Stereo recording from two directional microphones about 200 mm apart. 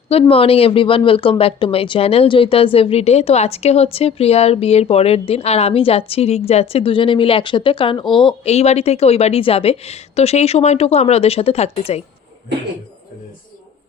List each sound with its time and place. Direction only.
0.1 s speech: 30° left (ahead or behind)